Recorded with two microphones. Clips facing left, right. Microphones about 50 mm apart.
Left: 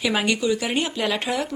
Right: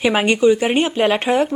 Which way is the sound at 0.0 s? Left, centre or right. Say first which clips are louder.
Right 8 dB; right.